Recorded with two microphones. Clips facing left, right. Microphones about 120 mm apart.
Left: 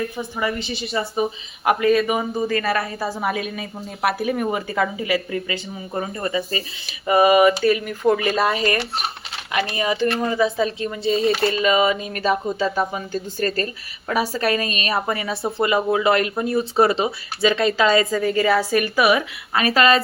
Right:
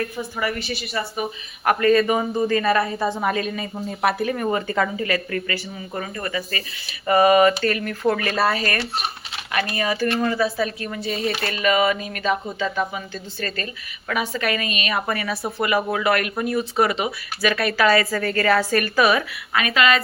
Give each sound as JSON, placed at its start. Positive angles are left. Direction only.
{"t": 0.2, "sound": "speech", "side_deg": 20}
{"t": 1.6, "sound": "a woman's voice", "side_deg": 5}
{"t": 7.1, "sound": "speech", "side_deg": 10}
{"t": 12.1, "sound": "a woman's voice", "side_deg": 35}
{"t": 14.1, "sound": "a woman's voice", "side_deg": 35}
{"t": 15.0, "sound": "speech", "side_deg": 20}
{"t": 19.5, "sound": "a woman's voice", "side_deg": 35}